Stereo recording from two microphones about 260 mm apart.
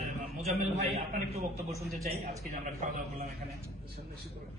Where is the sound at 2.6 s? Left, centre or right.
Right.